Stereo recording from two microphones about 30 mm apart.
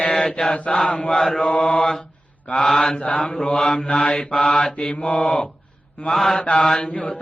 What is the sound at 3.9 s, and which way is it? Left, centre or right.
Mantra, left.